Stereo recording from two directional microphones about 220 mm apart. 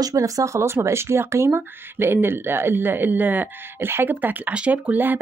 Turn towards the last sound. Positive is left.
turn(degrees=-10)  # may be behind; listen again after turning